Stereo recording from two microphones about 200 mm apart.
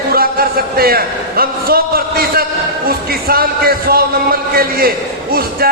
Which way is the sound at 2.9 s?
50° right (ahead or behind).